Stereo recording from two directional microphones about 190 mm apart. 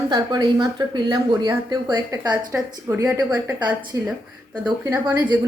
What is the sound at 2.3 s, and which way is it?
A woman's voice, 10° right (ahead or behind).